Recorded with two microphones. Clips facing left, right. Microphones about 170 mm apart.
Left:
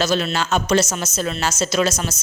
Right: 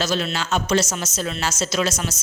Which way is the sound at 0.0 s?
55° left (ahead or behind).